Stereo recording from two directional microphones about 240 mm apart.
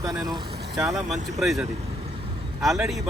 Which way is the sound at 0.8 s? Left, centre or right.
Centre.